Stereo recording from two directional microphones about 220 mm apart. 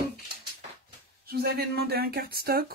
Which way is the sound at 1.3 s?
45° right (ahead or behind).